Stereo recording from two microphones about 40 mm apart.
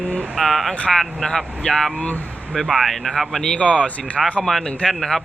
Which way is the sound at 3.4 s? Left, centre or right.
Left.